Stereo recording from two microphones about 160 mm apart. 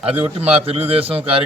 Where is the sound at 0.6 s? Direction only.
35° right (ahead or behind).